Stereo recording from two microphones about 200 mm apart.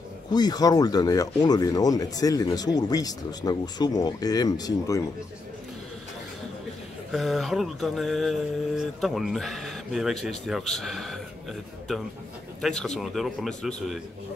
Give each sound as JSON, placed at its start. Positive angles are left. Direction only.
{"t": 0.3, "sound": "speech", "side_deg": 20}
{"t": 7.1, "sound": "mantra", "side_deg": 0}
{"t": 12.6, "sound": "mantra", "side_deg": 5}